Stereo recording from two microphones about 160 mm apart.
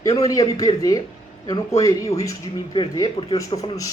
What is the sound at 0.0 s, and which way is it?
A man's voice, 20° left (ahead or behind).